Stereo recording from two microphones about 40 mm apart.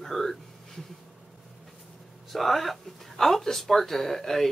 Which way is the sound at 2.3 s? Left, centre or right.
Centre.